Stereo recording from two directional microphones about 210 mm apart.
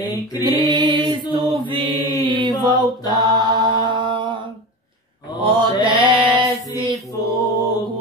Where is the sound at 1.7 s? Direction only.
25° right (ahead or behind).